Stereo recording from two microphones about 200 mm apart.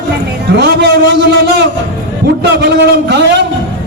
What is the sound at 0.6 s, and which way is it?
A man's voice, 55° right (ahead or behind).